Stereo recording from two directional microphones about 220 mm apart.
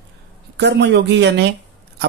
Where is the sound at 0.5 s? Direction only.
50° right (ahead or behind).